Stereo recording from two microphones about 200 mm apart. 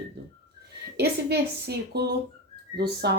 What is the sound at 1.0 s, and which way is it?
A child's voice, 55° right (ahead or behind).